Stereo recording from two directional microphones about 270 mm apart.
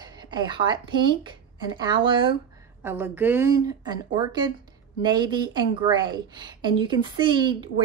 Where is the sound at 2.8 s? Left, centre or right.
Centre.